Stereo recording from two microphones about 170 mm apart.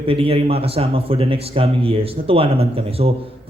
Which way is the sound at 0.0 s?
35° right (ahead or behind).